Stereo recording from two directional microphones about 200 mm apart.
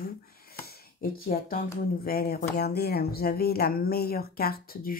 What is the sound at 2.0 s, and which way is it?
Speech, 50° left (ahead or behind).